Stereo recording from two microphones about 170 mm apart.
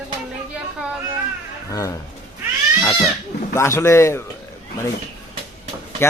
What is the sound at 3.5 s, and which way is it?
Speech, 15° left (ahead or behind).